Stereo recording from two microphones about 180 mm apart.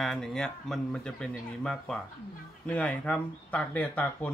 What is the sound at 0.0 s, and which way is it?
Speech, centre (ahead or behind).